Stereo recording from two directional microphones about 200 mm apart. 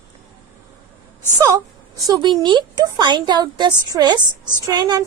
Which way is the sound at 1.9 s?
15° right (ahead or behind).